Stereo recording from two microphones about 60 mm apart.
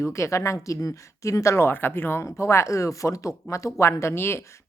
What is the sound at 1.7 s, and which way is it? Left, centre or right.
Speech, left.